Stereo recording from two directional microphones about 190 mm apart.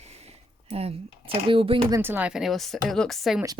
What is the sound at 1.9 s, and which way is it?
Speech, 10° right (ahead or behind).